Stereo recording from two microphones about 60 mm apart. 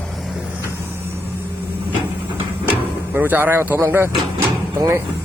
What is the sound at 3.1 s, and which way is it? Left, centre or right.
Speech, right.